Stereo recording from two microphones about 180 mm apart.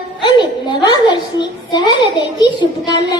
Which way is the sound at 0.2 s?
25° left (ahead or behind).